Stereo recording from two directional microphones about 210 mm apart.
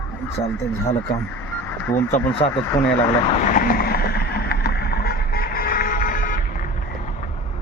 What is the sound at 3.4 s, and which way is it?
Vehicle, 40° left (ahead or behind).